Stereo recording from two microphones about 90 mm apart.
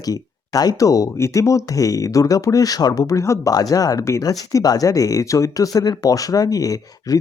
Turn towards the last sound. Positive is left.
turn(degrees=40)  # may be behind; listen again after turning